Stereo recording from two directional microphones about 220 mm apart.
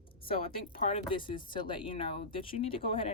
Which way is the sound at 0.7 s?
25° left (ahead or behind).